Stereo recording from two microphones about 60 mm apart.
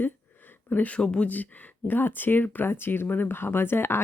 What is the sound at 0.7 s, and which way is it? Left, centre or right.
Speech, left.